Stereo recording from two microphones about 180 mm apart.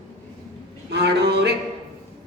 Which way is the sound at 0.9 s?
70° right (ahead or behind).